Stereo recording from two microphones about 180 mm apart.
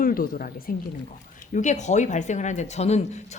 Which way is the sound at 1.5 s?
40° left (ahead or behind).